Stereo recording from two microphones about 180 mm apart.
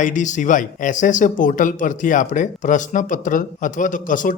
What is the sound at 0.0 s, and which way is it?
Speech, 45° left (ahead or behind).